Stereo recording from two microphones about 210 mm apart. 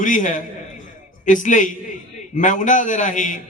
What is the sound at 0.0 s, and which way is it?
A man's voice, 40° left (ahead or behind).